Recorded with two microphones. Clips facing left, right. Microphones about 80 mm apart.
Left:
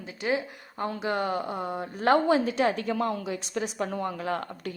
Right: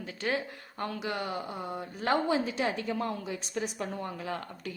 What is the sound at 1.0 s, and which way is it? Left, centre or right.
A woman's voice, left.